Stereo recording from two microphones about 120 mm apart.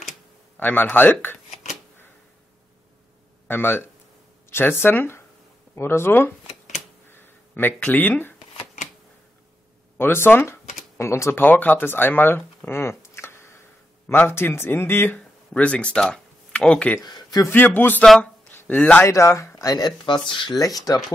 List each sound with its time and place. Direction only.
0.6 s speech: 15° left (ahead or behind)
3.4 s speech: 20° left (ahead or behind)
7.1 s a sound: 15° left (ahead or behind)
9.9 s speech: 20° left (ahead or behind)
17.0 s speech: 35° left (ahead or behind)
17.5 s speech: 15° left (ahead or behind)
18.0 s speech: 5° left (ahead or behind)
19.0 s speech: 25° left (ahead or behind); by 20.5 s 40° left (ahead or behind)
20.9 s speech: 30° left (ahead or behind)